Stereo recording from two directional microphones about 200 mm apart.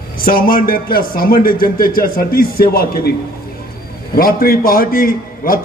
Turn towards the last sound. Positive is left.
turn(degrees=45)  # may be behind; listen again after turning